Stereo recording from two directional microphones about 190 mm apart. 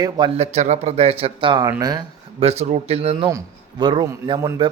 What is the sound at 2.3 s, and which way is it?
Speech, 30° right (ahead or behind).